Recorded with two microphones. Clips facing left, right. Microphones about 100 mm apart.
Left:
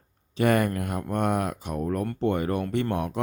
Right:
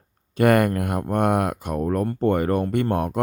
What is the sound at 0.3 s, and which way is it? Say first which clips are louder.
Speech: right 5 dB; 55° right (ahead or behind).